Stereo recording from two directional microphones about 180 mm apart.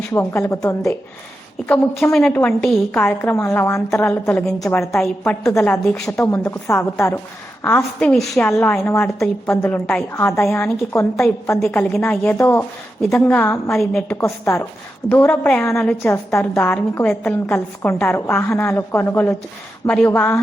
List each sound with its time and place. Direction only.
0.1 s a woman's voice: 15° left (ahead or behind)
5.0 s a woman's voice: 5° left (ahead or behind)